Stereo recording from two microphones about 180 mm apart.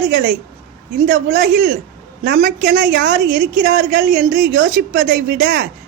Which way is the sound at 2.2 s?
65° right (ahead or behind).